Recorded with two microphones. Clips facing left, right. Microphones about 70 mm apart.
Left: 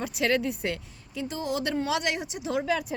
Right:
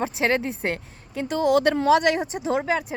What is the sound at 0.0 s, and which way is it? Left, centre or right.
A woman's voice, right.